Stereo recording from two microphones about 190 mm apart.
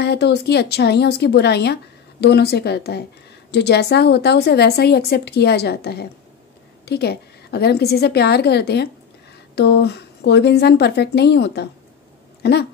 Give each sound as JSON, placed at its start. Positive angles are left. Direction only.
{"t": 0.0, "sound": "speech", "side_deg": 60}